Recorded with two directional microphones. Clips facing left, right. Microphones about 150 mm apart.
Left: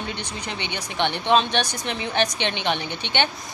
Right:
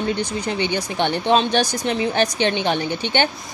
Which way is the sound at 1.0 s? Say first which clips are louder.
Right 2 dB; 40° right (ahead or behind).